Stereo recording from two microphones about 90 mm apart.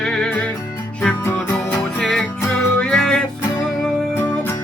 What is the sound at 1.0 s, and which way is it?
Music, 25° left (ahead or behind).